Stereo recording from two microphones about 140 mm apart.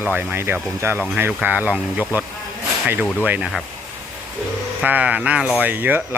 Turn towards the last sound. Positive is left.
turn(degrees=-15)  # may be behind; listen again after turning